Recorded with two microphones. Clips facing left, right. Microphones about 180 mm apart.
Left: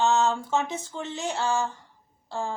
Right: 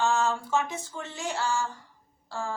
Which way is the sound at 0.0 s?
20° left (ahead or behind).